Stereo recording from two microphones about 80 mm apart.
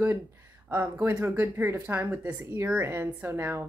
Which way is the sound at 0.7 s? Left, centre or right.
Right.